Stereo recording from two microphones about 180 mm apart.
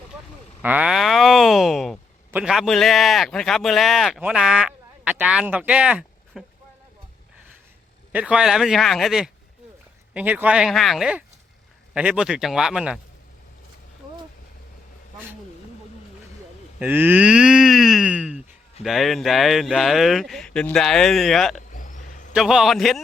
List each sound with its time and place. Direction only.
0.6 s a man's voice: 10° right (ahead or behind)
8.1 s speech: 5° right (ahead or behind)
16.8 s speech: 10° right (ahead or behind)
21.7 s vehicle: 45° left (ahead or behind)
22.3 s speech: 5° right (ahead or behind)